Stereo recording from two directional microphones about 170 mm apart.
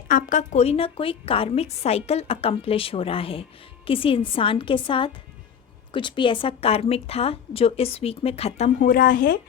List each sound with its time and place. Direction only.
0.1 s a woman's voice: 50° left (ahead or behind)
8.9 s speech: 55° left (ahead or behind)